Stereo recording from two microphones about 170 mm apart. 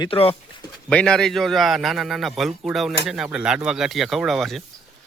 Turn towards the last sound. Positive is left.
turn(degrees=0)  # may be behind; listen again after turning